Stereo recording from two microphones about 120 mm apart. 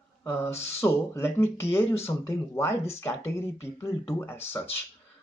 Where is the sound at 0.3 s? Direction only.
20° left (ahead or behind).